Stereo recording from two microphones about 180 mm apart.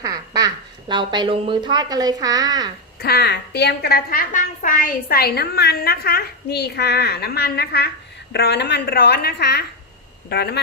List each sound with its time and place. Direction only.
0.0 s speech: 20° right (ahead or behind)
3.0 s a woman's voice: 60° left (ahead or behind)